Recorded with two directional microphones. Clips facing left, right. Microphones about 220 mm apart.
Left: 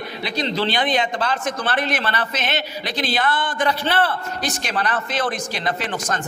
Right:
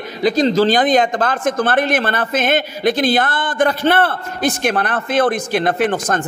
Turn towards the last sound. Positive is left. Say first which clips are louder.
# right 8 dB
turn(degrees=-55)  # may be behind; listen again after turning